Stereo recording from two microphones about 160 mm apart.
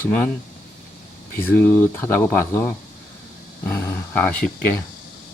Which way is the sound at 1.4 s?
10° left (ahead or behind).